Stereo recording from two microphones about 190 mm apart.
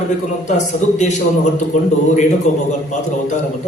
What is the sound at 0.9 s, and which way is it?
A man's voice, 40° left (ahead or behind).